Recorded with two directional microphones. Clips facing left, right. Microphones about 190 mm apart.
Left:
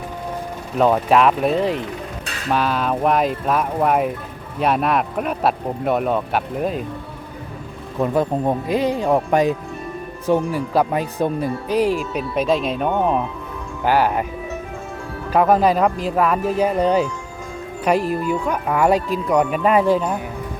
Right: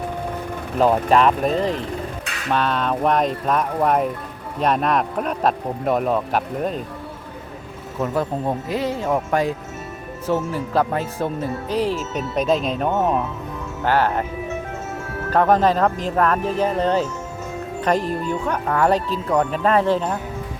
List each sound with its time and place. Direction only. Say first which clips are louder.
0.8 s a man's voice: left 1 dB; centre (ahead or behind)
7.9 s speech: left 4 dB; 15° left (ahead or behind)
12.3 s a man's voice: even; centre (ahead or behind)
13.8 s speech: left 2 dB; 10° left (ahead or behind)
15.3 s speech: left 1 dB; 10° left (ahead or behind)